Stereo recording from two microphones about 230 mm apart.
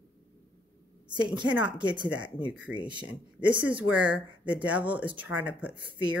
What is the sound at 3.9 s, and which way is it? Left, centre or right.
Speech, centre.